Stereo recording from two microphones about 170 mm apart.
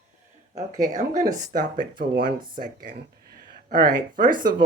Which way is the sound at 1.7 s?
60° right (ahead or behind).